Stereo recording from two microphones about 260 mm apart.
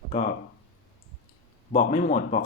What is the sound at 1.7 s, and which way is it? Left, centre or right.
Speech, left.